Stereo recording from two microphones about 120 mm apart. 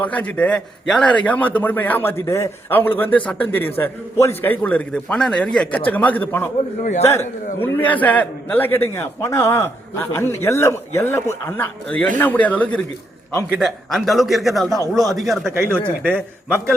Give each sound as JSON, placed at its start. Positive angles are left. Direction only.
{"t": 0.0, "sound": "a man's voice", "side_deg": 10}
{"t": 6.8, "sound": "a man's voice", "side_deg": 80}
{"t": 7.1, "sound": "a man's voice", "side_deg": 20}
{"t": 13.6, "sound": "a man's voice", "side_deg": 0}